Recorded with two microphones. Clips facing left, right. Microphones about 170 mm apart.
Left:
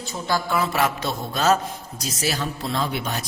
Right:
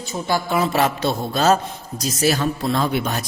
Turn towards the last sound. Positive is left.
turn(degrees=-50)  # may be behind; listen again after turning